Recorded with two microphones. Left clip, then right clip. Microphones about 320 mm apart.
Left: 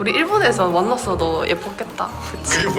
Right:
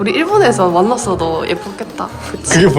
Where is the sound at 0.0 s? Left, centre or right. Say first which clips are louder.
Right 5 dB; centre.